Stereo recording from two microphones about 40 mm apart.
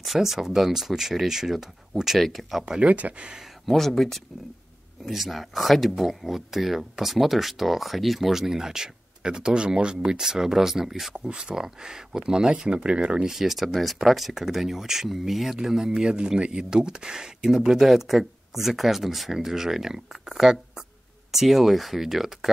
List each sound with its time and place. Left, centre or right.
0.0 s speech: centre
2.1 s speech: centre
2.6 s speech: right
2.9 s speech: right
3.6 s speech: centre; by 13.2 s right
13.2 s speech: centre